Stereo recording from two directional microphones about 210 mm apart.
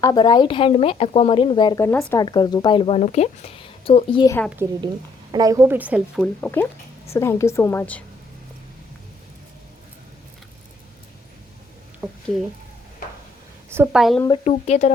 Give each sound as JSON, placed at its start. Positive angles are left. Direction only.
{"t": 0.0, "sound": "a woman's voice", "side_deg": 20}
{"t": 4.6, "sound": "a woman's voice", "side_deg": -10}
{"t": 6.4, "sound": "a woman's voice", "side_deg": 10}
{"t": 12.0, "sound": "a sound", "side_deg": 0}
{"t": 13.7, "sound": "a woman's voice", "side_deg": -10}
{"t": 14.4, "sound": "speech", "side_deg": 30}